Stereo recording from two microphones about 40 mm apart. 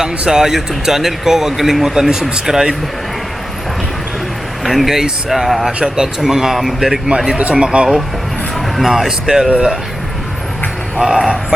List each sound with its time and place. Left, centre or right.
0.0 s a man's voice: centre
4.6 s a man's voice: centre
7.5 s speech: right
8.8 s a man's voice: centre
9.5 s speech: right
10.9 s speech: centre